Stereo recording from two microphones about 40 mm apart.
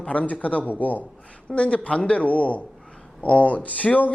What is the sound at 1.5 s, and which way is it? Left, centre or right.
Speech, left.